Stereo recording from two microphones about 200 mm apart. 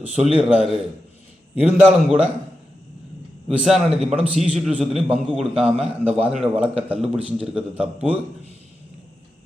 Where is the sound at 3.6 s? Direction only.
5° right (ahead or behind).